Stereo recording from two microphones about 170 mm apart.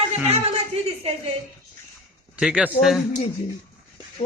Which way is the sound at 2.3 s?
5° right (ahead or behind).